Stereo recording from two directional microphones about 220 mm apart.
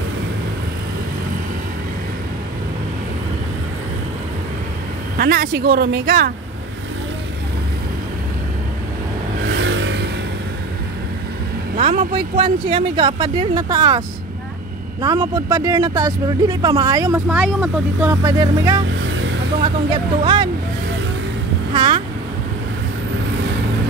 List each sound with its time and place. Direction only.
5.1 s a woman's voice: 40° right (ahead or behind)
9.6 s vehicle: 55° right (ahead or behind)
11.8 s speech: 25° right (ahead or behind)
19.0 s vehicle: 55° right (ahead or behind)
19.6 s speech: 20° right (ahead or behind)
21.7 s a sound: 20° right (ahead or behind)